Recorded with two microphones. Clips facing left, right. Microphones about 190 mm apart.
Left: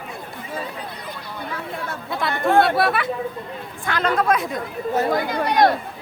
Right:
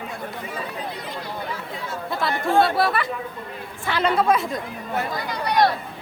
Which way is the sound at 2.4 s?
60° left (ahead or behind).